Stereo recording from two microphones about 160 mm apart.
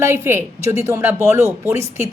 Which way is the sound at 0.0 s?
15° right (ahead or behind).